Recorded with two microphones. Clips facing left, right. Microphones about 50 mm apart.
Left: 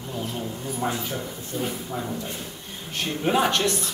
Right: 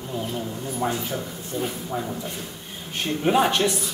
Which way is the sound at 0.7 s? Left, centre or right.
Centre.